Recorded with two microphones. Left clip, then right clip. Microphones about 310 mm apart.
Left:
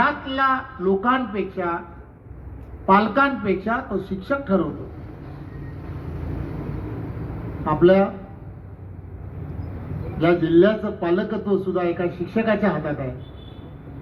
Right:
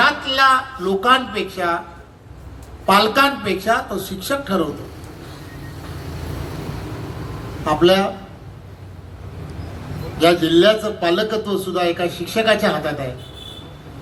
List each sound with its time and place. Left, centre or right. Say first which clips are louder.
0.0 s a man's voice: right 6 dB; right
2.8 s a man's voice: right 3 dB; right
7.6 s a man's voice: right 2 dB; right
10.2 s a man's voice: right 3 dB; right